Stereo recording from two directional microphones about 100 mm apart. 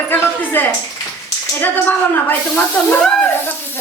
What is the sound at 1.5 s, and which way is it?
Speech, 20° left (ahead or behind).